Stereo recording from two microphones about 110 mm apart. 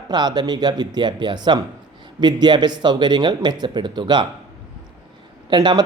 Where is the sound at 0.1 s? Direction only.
40° right (ahead or behind).